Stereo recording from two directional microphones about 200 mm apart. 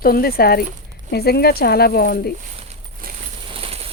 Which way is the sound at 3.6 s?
30° right (ahead or behind).